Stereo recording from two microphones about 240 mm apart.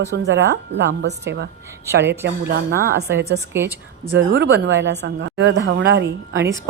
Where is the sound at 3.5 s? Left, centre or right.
Centre.